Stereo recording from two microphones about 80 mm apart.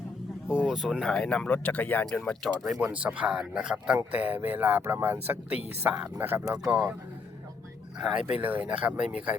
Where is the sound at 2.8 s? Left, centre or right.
Centre.